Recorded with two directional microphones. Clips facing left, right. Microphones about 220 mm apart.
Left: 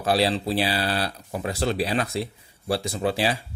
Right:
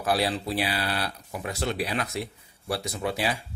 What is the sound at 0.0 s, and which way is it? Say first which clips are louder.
Speech: left 4 dB; 25° left (ahead or behind).